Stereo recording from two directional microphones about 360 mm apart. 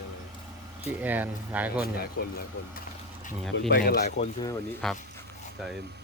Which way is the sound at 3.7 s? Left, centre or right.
Left.